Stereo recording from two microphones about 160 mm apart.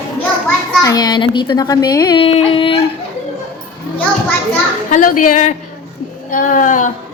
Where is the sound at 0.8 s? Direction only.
25° left (ahead or behind).